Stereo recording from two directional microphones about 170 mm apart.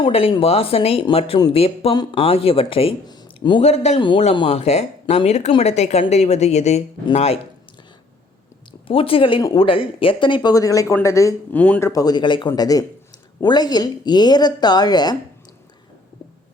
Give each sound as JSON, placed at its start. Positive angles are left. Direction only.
{"t": 0.0, "sound": "speech", "side_deg": 35}
{"t": 3.6, "sound": "speech", "side_deg": 40}
{"t": 8.9, "sound": "a man's voice", "side_deg": 35}
{"t": 11.9, "sound": "a man's voice", "side_deg": 20}